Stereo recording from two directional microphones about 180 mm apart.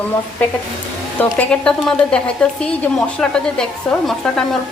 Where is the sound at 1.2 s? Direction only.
5° left (ahead or behind).